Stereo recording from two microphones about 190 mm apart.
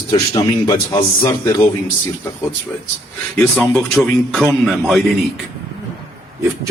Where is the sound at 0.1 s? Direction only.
20° left (ahead or behind).